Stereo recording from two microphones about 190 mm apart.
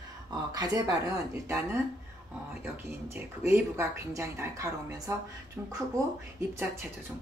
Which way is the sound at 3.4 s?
15° right (ahead or behind).